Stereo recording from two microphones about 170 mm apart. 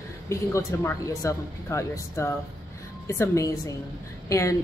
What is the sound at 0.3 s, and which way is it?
A woman's voice, 15° left (ahead or behind).